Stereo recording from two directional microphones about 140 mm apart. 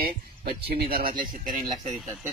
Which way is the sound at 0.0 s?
90° right.